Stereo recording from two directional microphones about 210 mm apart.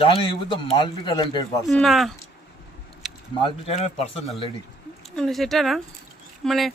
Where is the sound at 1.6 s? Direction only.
Centre (ahead or behind).